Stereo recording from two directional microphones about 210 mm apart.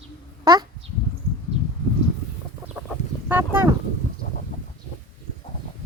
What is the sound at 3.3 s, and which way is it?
Speech, 10° right (ahead or behind).